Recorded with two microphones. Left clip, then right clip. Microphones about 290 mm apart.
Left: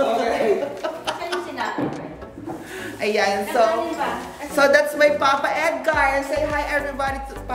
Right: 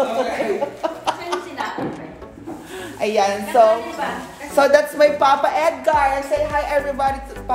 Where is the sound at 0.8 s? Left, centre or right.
Centre.